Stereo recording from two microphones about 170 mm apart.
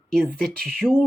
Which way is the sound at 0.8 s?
15° left (ahead or behind).